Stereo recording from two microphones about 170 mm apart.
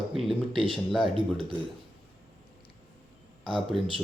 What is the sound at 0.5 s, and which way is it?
Speech, 30° right (ahead or behind).